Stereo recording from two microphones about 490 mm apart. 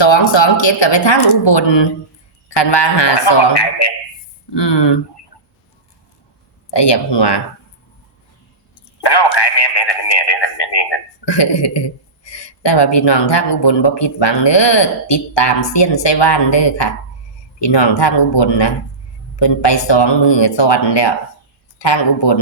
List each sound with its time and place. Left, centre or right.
0.0 s speech: left
6.7 s speech: left
9.0 s speech: left